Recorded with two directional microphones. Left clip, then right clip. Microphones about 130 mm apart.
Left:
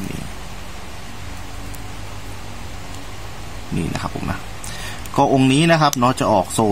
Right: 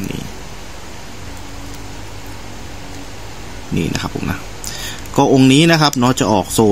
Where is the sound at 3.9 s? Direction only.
15° right (ahead or behind).